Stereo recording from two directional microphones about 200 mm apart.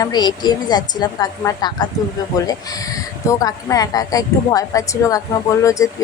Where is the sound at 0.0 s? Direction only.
20° left (ahead or behind).